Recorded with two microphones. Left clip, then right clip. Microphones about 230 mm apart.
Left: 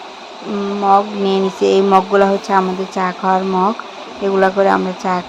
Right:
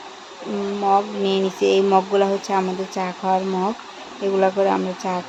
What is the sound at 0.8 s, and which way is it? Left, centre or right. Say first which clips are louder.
Speech: left 6 dB; centre.